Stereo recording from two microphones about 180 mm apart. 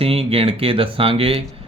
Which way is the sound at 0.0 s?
30° right (ahead or behind).